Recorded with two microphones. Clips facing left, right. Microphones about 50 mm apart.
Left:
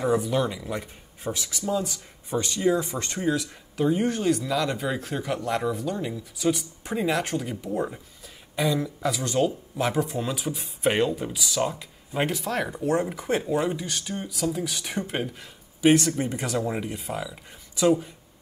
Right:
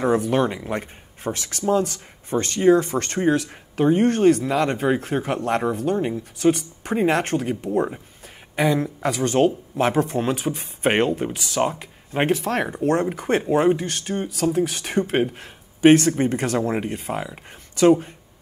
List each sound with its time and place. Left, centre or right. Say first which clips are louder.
0.0 s speech: right 4 dB; right
17.1 s speech: right 4 dB; right